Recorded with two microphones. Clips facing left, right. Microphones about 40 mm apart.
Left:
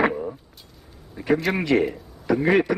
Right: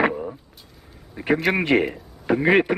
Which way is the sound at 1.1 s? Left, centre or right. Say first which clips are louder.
Right 1 dB; right.